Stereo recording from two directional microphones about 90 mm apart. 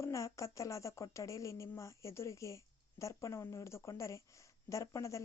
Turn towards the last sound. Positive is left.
turn(degrees=35)  # may be behind; listen again after turning